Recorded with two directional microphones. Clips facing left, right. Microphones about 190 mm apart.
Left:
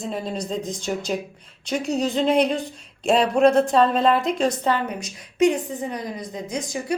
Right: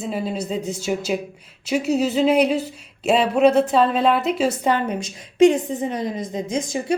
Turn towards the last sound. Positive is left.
turn(degrees=-25)  # may be behind; listen again after turning